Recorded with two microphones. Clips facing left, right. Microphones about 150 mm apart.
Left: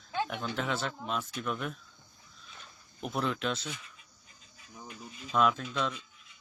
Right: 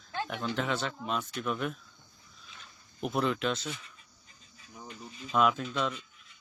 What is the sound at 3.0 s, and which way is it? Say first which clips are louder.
Speech: right 3 dB; centre (ahead or behind).